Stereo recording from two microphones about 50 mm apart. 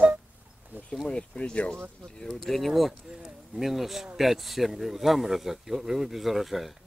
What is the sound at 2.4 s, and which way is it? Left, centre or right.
Speech, centre.